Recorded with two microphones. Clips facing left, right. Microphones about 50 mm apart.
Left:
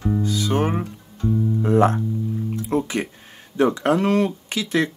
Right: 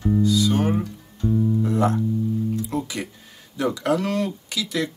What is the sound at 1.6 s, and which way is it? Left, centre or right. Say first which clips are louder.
Music: left 4 dB; left.